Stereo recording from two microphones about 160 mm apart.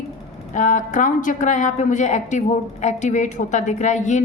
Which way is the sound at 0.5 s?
50° left (ahead or behind).